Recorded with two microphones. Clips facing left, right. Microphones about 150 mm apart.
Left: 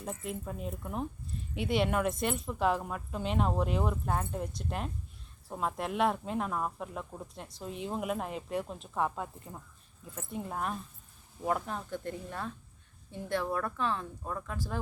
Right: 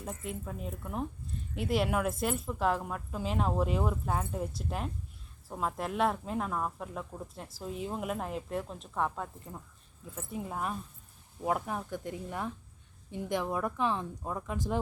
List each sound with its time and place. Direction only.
0.0 s a woman's voice: centre (ahead or behind); by 14.8 s 15° right (ahead or behind)